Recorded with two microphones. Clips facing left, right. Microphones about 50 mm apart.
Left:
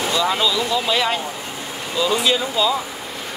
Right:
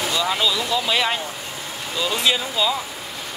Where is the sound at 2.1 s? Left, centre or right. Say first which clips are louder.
Left 2 dB; centre.